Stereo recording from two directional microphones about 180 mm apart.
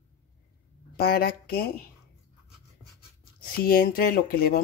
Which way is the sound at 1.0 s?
55° left (ahead or behind).